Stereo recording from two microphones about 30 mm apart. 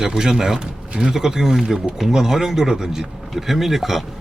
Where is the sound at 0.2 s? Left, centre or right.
Centre.